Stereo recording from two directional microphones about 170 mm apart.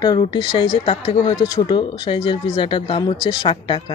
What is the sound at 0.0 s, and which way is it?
Speech, 25° left (ahead or behind).